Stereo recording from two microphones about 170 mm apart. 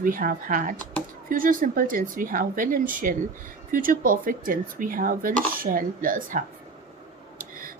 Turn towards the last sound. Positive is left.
turn(degrees=-55)  # may be behind; listen again after turning